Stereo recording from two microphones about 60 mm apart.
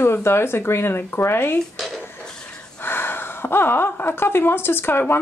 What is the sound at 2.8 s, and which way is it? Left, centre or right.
Speech, left.